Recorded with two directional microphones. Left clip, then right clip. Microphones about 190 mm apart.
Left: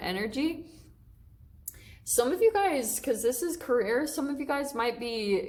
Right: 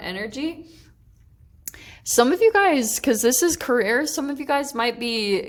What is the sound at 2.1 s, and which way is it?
A woman's voice, 60° right (ahead or behind).